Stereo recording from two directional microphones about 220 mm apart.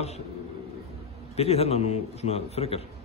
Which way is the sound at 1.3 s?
30° left (ahead or behind).